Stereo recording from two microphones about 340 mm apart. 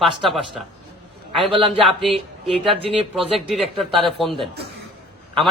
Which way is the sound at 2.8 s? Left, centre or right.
Centre.